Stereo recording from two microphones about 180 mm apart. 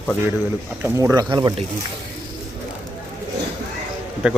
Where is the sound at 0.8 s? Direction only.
15° right (ahead or behind).